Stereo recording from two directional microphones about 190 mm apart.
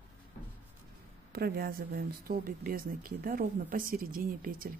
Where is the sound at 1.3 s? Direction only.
55° right (ahead or behind).